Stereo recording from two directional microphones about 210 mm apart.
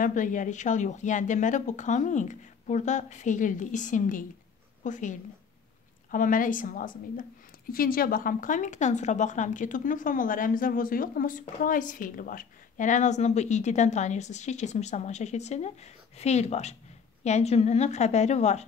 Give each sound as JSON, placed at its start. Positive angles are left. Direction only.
{"t": 0.0, "sound": "a woman's voice", "side_deg": 40}
{"t": 6.1, "sound": "a woman's voice", "side_deg": 40}